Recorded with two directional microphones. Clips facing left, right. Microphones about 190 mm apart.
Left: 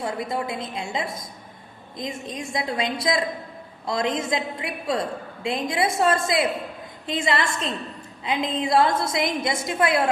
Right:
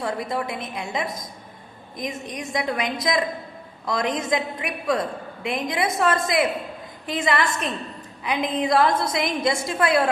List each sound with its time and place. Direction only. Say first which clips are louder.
0.0 s a woman's voice: right 1 dB; 25° left (ahead or behind)